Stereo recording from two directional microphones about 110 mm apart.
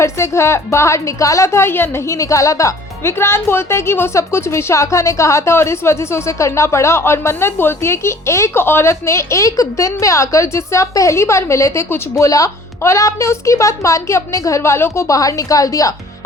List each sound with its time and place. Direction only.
0.0 s a woman's voice: 25° left (ahead or behind)